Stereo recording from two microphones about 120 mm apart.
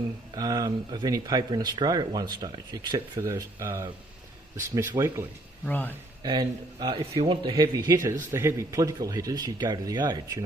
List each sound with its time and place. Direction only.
0.3 s speech: 35° right (ahead or behind)
3.2 s speech: 25° right (ahead or behind)
5.7 s speech: 15° left (ahead or behind)
6.2 s speech: 40° right (ahead or behind)